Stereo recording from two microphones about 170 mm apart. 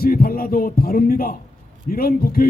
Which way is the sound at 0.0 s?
60° left (ahead or behind).